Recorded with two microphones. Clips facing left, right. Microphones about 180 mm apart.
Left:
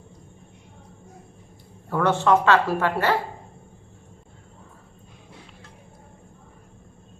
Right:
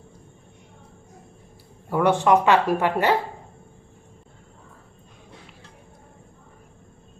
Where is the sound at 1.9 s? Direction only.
15° right (ahead or behind).